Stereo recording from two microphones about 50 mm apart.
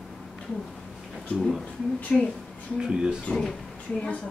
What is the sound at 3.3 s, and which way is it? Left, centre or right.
Speech, left.